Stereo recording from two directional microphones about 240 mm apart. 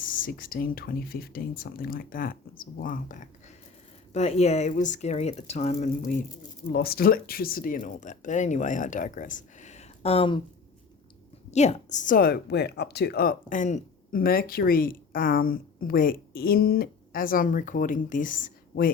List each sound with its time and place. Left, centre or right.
0.0 s a woman's voice: left
6.7 s a woman's voice: left
11.5 s a woman's voice: left